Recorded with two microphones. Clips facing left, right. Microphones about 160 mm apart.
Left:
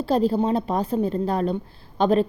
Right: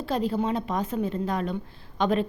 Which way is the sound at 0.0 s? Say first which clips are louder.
Left 6 dB; 35° left (ahead or behind).